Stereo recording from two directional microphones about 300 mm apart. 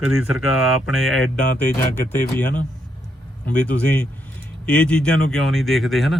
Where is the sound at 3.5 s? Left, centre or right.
Centre.